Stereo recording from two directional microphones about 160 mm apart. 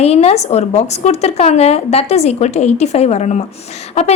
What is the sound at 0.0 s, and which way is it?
A woman's voice, 40° left (ahead or behind).